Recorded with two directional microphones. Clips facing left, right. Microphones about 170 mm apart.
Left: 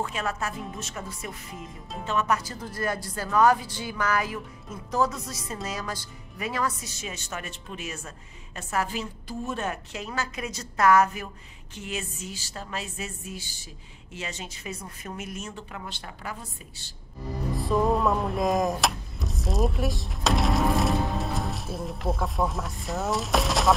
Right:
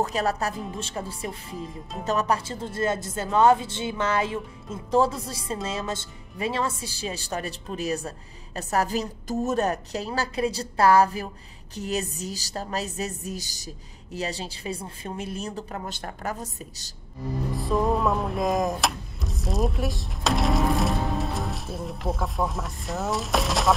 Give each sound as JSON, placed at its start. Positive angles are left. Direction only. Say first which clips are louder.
{"t": 0.0, "sound": "a woman's voice", "louder": "right 5 dB", "side_deg": -35}
{"t": 17.5, "sound": "music", "louder": "left 1 dB", "side_deg": 0}